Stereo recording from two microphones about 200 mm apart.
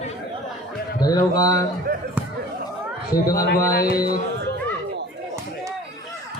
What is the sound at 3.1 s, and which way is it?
Speech, 15° left (ahead or behind).